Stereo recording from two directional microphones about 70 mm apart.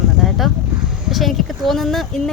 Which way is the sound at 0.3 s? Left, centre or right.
Centre.